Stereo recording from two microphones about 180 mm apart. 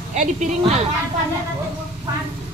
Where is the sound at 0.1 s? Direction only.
40° right (ahead or behind).